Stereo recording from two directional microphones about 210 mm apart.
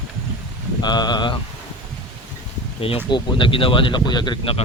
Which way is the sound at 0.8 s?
20° left (ahead or behind).